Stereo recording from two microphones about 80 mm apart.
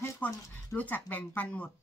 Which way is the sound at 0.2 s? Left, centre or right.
Centre.